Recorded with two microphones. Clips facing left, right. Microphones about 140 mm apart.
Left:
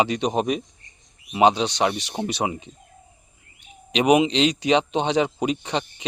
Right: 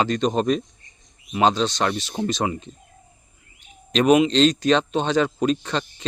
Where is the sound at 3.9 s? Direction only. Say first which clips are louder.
Right 2 dB; 15° left (ahead or behind).